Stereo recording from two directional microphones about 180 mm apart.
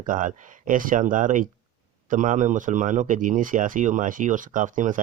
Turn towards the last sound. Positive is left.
turn(degrees=-45)  # may be behind; listen again after turning